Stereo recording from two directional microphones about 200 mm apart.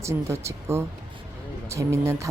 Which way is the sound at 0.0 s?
15° right (ahead or behind).